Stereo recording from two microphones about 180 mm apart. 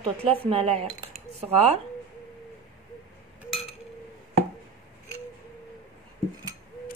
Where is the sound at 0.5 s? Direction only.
30° right (ahead or behind).